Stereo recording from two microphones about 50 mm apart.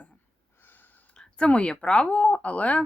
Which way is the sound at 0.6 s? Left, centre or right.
Left.